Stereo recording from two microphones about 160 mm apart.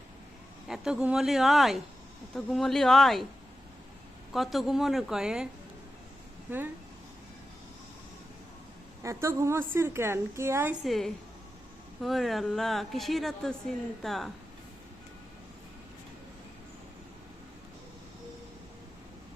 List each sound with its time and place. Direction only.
0.7 s a woman's voice: 5° right (ahead or behind)
4.3 s a woman's voice: centre (ahead or behind)
9.0 s a woman's voice: 20° right (ahead or behind)
10.8 s a woman's voice: centre (ahead or behind)